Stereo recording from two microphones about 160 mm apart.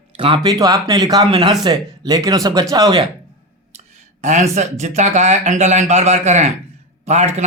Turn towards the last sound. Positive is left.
turn(degrees=-45)  # may be behind; listen again after turning